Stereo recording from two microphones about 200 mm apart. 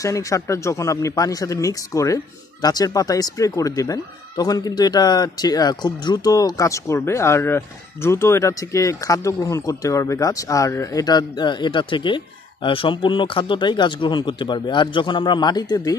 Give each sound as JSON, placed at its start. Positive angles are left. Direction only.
{"t": 0.0, "sound": "speech", "side_deg": 15}